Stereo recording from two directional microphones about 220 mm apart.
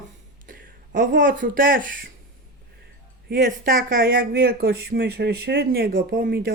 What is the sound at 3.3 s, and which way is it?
Speech, 40° right (ahead or behind).